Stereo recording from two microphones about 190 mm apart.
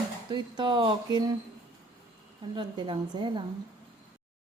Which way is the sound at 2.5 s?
25° right (ahead or behind).